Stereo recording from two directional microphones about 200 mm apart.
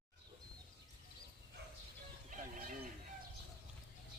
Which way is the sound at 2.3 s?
40° right (ahead or behind).